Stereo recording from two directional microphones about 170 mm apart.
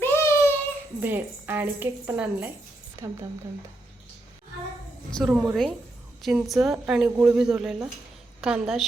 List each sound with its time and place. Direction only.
0.0 s child singing: 15° left (ahead or behind)
0.9 s a woman's voice: 10° right (ahead or behind)
5.1 s a woman's voice: centre (ahead or behind)